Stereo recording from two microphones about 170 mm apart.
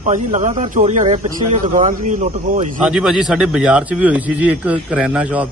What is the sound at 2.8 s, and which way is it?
A man's voice, 5° right (ahead or behind).